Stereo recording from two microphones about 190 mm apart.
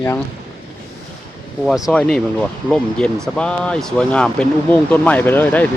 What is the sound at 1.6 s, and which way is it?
Speech, centre (ahead or behind).